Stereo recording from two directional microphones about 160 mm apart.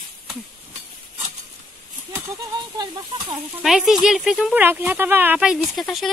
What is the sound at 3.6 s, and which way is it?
Speech, centre (ahead or behind).